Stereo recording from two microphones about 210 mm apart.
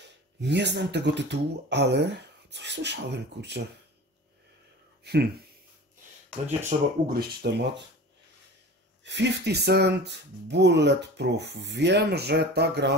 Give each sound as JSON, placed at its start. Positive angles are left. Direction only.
{"t": 0.4, "sound": "speech", "side_deg": -55}
{"t": 5.0, "sound": "speech", "side_deg": -50}
{"t": 6.7, "sound": "speech", "side_deg": -35}
{"t": 7.1, "sound": "speech", "side_deg": -50}
{"t": 9.0, "sound": "speech", "side_deg": -55}